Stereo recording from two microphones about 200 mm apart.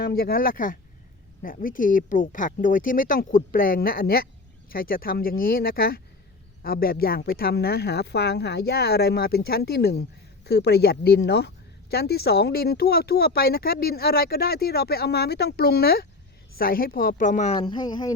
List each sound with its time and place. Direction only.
0.0 s a woman's voice: 50° left (ahead or behind); by 18.1 s 20° left (ahead or behind)